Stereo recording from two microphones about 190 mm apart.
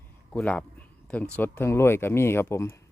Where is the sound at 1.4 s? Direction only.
10° left (ahead or behind).